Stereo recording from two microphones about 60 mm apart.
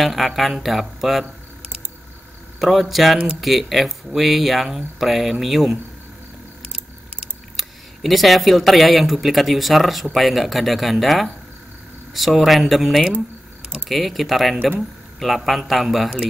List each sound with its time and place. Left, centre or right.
0.0 s speech: centre
2.6 s speech: centre
7.5 s speech: centre